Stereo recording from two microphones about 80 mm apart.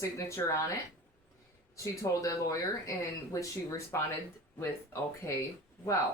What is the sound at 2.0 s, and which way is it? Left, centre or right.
Speech, left.